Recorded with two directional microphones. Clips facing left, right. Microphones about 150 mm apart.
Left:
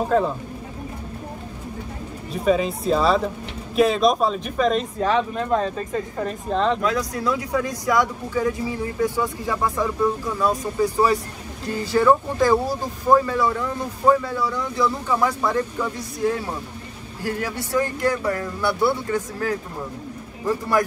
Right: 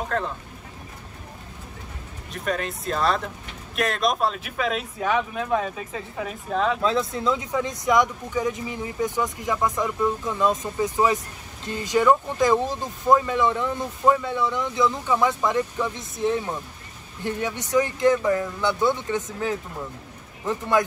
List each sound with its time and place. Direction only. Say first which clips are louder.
0.1 s speech: left 8 dB; 5° left (ahead or behind)
2.3 s speech: left 8 dB; centre (ahead or behind)
6.8 s speech: even; 25° right (ahead or behind)
12.5 s speech: left 2 dB; 10° left (ahead or behind)
13.3 s speech: even; 20° right (ahead or behind)
18.8 s speech: left 2 dB; 10° left (ahead or behind)
19.0 s speech: left 2 dB; 20° right (ahead or behind)